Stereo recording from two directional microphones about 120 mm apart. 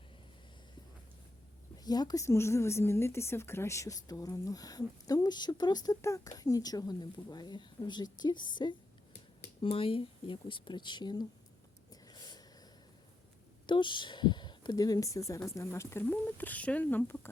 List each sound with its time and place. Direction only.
1.8 s a woman's voice: 35° left (ahead or behind)
9.6 s speech: 50° left (ahead or behind)
11.9 s a sound: 35° left (ahead or behind)
13.7 s speech: 40° left (ahead or behind); by 17.2 s 15° left (ahead or behind)